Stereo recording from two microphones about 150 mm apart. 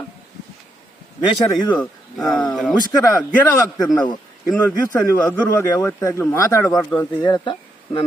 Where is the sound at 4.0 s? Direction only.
30° left (ahead or behind).